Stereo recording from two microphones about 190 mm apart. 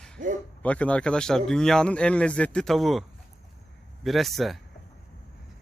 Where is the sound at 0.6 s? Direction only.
5° left (ahead or behind).